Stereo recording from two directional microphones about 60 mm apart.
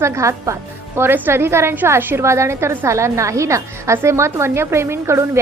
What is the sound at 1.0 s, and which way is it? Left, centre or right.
A woman's voice, right.